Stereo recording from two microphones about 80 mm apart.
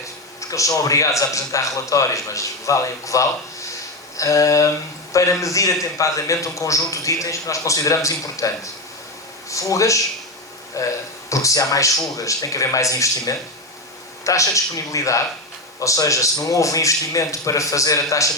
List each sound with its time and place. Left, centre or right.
0.0 s a man's voice: left